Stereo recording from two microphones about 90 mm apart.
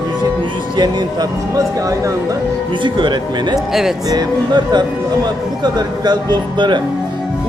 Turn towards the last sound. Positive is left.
turn(degrees=-55)  # may be behind; listen again after turning